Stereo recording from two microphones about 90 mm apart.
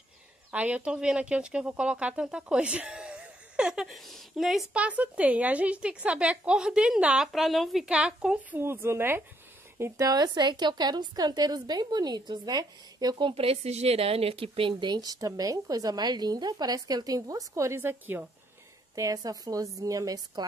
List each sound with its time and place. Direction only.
0.5 s speech: 15° right (ahead or behind)
4.7 s a woman's voice: 15° right (ahead or behind)
7.3 s a woman's voice: centre (ahead or behind)
7.8 s a woman's voice: 10° right (ahead or behind)
8.5 s a woman's voice: 25° right (ahead or behind)
9.9 s speech: 45° right (ahead or behind)
13.3 s speech: 90° right; by 18.2 s 25° right (ahead or behind)
18.9 s speech: 40° right (ahead or behind)